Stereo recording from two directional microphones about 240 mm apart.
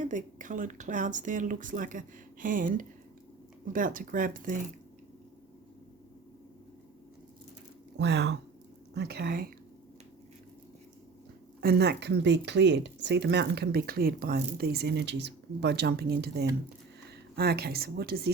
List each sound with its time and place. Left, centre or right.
0.0 s speech: right
7.9 s speech: right
11.6 s speech: right